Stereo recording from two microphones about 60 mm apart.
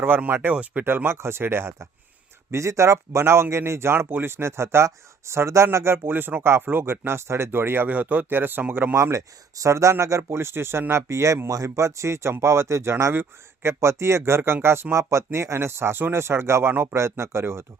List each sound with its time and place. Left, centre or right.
0.0 s speech: right
0.9 s speech: right
2.5 s speech: right
7.9 s speech: right
9.0 s speech: right